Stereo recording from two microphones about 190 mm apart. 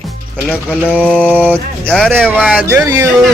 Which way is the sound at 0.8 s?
10° right (ahead or behind).